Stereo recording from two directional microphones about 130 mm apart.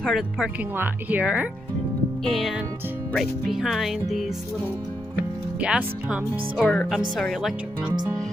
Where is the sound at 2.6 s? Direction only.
15° right (ahead or behind).